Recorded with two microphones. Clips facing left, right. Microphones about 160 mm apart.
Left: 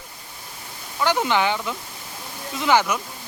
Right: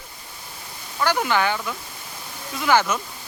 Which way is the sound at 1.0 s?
20° left (ahead or behind).